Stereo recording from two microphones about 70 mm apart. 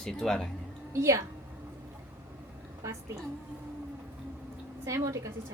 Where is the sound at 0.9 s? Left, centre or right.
Right.